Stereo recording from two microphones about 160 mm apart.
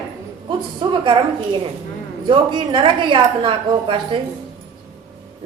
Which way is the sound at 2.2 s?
30° right (ahead or behind).